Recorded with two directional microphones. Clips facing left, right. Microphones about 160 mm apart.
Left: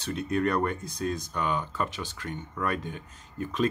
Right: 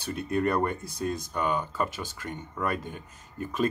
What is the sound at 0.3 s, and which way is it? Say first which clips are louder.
Speech: right 1 dB; 5° right (ahead or behind).